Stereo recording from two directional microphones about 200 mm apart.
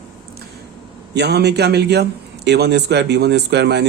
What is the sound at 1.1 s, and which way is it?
A man's voice, 55° right (ahead or behind).